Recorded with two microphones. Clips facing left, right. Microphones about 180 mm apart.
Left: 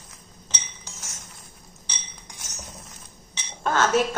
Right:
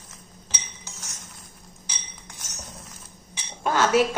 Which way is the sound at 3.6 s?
10° right (ahead or behind).